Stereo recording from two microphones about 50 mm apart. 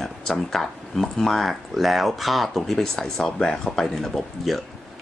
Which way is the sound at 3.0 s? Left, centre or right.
Centre.